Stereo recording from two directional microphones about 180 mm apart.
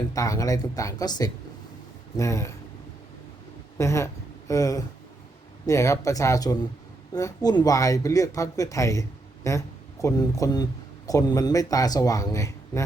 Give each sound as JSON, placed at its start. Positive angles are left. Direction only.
{"t": 0.1, "sound": "speech", "side_deg": 20}
{"t": 3.8, "sound": "speech", "side_deg": 15}